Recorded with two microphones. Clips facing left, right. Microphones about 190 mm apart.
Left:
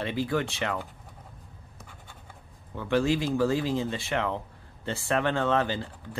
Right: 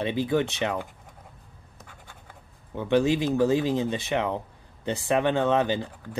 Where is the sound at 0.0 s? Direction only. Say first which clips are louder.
Right 4 dB; 20° right (ahead or behind).